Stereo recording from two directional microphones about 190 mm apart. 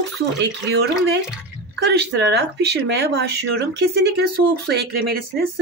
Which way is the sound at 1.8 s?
65° right (ahead or behind).